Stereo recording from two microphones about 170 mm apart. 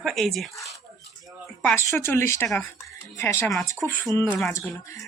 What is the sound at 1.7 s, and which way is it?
Speech, 15° left (ahead or behind).